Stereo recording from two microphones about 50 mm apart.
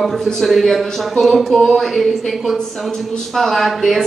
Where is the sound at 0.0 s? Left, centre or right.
Centre.